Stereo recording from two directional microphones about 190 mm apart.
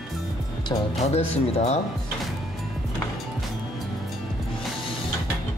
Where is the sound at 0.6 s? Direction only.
35° left (ahead or behind).